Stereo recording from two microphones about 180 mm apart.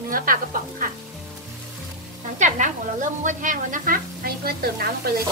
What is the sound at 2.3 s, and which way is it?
A woman's voice, 45° right (ahead or behind).